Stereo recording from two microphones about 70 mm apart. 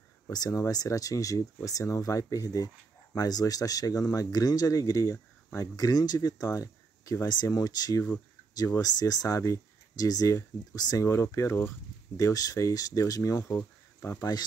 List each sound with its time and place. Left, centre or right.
0.3 s speech: left
11.1 s speech: left
12.2 s speech: left